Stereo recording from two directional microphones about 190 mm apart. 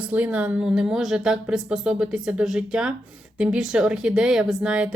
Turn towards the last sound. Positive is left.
turn(degrees=-5)  # may be behind; listen again after turning